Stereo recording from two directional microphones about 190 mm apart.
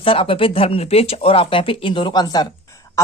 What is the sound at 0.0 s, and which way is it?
Speech, 30° left (ahead or behind).